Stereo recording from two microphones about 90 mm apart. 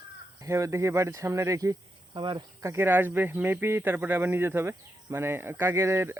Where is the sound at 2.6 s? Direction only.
30° right (ahead or behind).